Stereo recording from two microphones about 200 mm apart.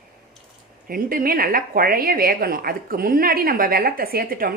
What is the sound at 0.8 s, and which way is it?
A woman's voice, 45° right (ahead or behind).